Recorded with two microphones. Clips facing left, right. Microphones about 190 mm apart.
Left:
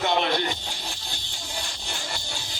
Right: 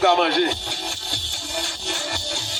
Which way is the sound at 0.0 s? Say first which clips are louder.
Right 6 dB; 70° right (ahead or behind).